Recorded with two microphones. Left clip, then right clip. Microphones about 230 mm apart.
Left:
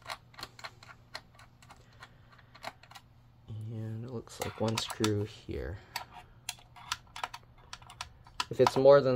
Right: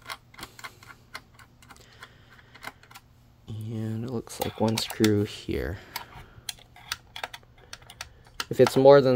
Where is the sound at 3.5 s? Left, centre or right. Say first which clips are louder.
Right 9 dB; right.